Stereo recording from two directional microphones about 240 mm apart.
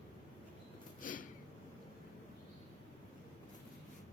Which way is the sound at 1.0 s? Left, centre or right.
Left.